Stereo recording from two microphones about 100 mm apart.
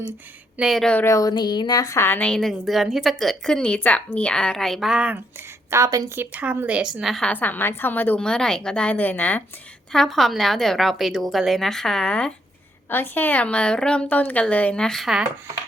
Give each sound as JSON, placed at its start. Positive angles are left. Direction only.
{"t": 0.5, "sound": "a woman's voice", "side_deg": -5}
{"t": 1.0, "sound": "speech", "side_deg": 30}
{"t": 1.3, "sound": "a woman's voice", "side_deg": 45}
{"t": 2.0, "sound": "a woman's voice", "side_deg": 15}
{"t": 2.4, "sound": "a woman's voice", "side_deg": 0}
{"t": 5.7, "sound": "a woman's voice", "side_deg": -35}
{"t": 6.1, "sound": "speech", "side_deg": -15}
{"t": 7.0, "sound": "a woman's voice", "side_deg": 5}
{"t": 7.3, "sound": "a woman's voice", "side_deg": 20}
{"t": 8.2, "sound": "a woman's voice", "side_deg": 5}
{"t": 9.9, "sound": "a woman's voice", "side_deg": 5}
{"t": 12.9, "sound": "a woman's voice", "side_deg": 20}